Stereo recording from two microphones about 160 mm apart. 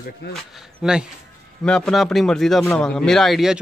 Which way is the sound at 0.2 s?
90° left.